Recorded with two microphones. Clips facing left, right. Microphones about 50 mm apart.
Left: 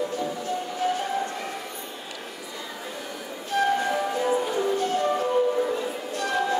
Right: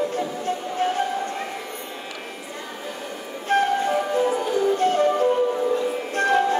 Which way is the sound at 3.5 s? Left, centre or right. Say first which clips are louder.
Right 3 dB; right.